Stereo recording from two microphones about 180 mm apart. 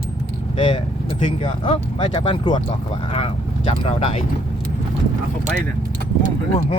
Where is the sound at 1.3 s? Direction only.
30° left (ahead or behind).